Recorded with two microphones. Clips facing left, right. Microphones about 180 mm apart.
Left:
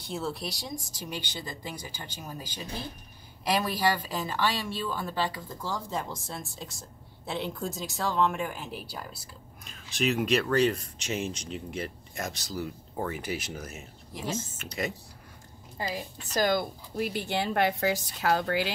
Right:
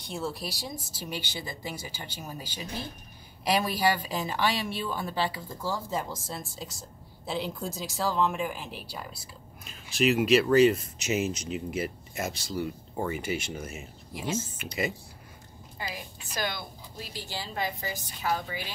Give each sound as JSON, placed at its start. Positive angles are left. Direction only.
{"t": 0.0, "sound": "a woman's voice", "side_deg": 0}
{"t": 16.3, "sound": "speech", "side_deg": 45}